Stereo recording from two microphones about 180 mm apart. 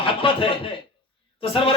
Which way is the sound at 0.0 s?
30° left (ahead or behind).